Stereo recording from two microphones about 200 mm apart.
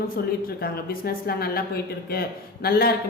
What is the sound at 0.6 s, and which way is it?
Speech, 50° left (ahead or behind).